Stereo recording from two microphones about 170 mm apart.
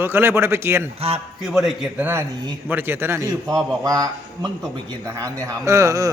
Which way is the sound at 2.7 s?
15° right (ahead or behind).